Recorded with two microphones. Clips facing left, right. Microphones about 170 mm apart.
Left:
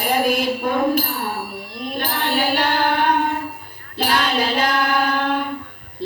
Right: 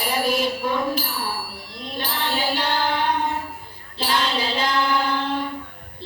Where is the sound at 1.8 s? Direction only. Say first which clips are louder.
Left 4 dB; 55° left (ahead or behind).